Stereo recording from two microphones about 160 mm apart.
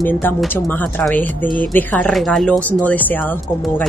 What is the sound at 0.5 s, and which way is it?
Speech, 10° left (ahead or behind).